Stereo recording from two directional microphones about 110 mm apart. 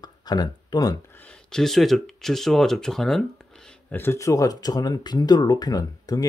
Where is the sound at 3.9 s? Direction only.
20° left (ahead or behind).